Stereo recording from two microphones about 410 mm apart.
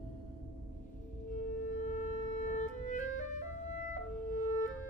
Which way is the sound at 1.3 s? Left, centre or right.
Centre.